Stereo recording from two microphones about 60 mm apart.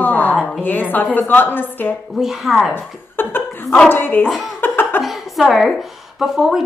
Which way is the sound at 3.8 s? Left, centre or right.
Left.